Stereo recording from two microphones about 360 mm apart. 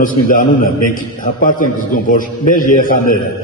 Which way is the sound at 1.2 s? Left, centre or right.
Left.